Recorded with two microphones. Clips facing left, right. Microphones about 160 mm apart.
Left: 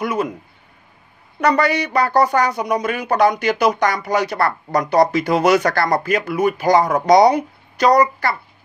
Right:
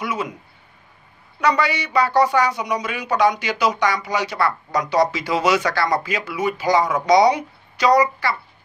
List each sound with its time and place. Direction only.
0.0 s speech: 55° left (ahead or behind)
1.4 s speech: 55° left (ahead or behind)